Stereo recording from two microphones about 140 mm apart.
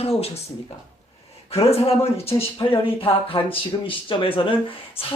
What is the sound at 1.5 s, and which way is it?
Speech, 45° left (ahead or behind).